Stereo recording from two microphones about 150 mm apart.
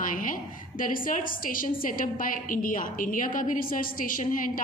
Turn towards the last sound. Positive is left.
turn(degrees=65)  # may be behind; listen again after turning